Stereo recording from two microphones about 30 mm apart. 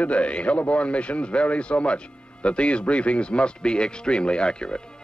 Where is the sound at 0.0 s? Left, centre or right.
Left.